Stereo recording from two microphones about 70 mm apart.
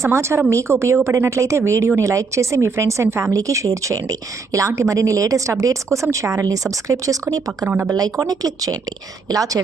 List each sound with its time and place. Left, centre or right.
0.0 s a woman's voice: right